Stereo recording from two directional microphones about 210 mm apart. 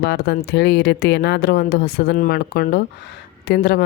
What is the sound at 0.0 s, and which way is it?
Speech, 50° left (ahead or behind).